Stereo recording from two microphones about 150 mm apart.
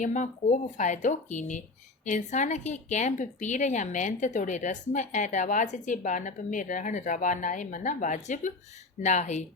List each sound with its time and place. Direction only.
0.0 s a woman's voice: 55° left (ahead or behind)